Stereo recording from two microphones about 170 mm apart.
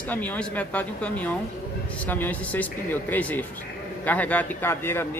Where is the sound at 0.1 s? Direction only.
10° left (ahead or behind).